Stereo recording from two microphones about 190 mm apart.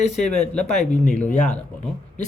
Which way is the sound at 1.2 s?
40° left (ahead or behind).